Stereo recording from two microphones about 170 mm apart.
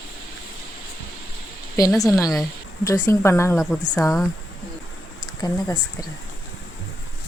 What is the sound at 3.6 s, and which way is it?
Speech, centre (ahead or behind).